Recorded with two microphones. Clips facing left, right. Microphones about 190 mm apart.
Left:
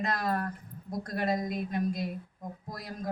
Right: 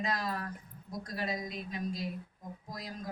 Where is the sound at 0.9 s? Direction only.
55° left (ahead or behind).